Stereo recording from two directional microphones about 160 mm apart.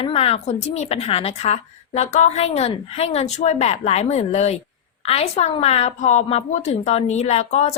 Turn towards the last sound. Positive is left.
turn(degrees=40)  # may be behind; listen again after turning